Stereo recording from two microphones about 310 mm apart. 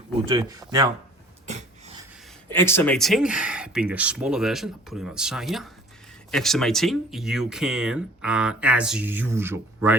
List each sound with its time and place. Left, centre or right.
0.3 s speech: centre
1.5 s a sound: right
2.5 s speech: centre